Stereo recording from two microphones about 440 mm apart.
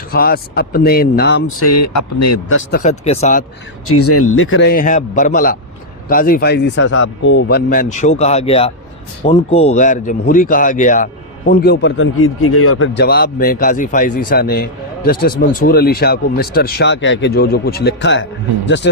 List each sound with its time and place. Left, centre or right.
0.1 s a man's voice: centre
3.8 s a man's voice: left